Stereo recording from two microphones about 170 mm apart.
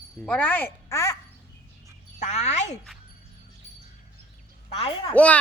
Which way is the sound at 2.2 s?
45° left (ahead or behind).